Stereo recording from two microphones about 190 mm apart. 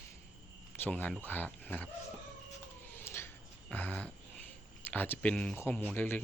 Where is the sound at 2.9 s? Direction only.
10° left (ahead or behind).